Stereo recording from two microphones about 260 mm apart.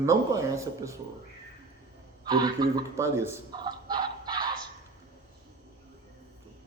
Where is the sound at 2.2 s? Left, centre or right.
Centre.